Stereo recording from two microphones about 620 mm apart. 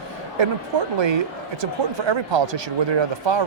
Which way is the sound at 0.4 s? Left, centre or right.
Right.